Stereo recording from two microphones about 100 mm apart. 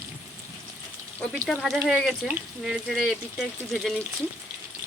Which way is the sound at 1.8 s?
Centre (ahead or behind).